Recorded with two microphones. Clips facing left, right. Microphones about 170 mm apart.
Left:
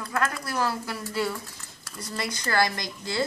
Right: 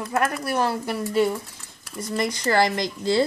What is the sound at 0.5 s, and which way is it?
Speech, 20° right (ahead or behind).